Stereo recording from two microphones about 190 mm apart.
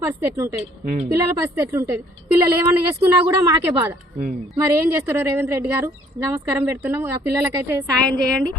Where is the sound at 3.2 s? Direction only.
20° right (ahead or behind).